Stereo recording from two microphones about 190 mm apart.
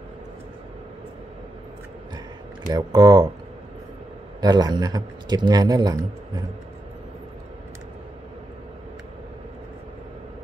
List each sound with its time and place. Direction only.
2.6 s speech: 20° right (ahead or behind)
4.4 s speech: 20° right (ahead or behind)